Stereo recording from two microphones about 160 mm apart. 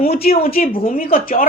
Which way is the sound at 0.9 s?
60° left (ahead or behind).